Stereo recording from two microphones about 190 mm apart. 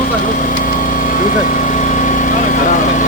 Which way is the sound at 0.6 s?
45° left (ahead or behind).